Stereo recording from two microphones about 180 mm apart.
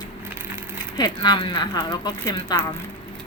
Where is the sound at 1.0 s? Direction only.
25° left (ahead or behind).